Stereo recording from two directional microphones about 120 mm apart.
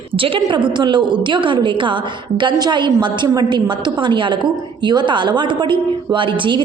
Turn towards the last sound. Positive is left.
turn(degrees=-45)  # may be behind; listen again after turning